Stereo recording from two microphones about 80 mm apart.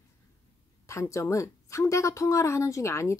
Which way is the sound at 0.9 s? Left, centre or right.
Left.